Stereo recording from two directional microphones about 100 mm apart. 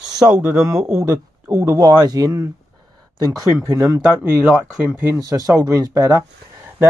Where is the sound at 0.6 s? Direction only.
25° right (ahead or behind).